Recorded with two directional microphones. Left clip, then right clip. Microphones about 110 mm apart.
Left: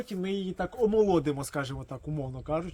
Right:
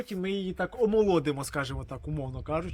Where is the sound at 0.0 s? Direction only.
30° left (ahead or behind).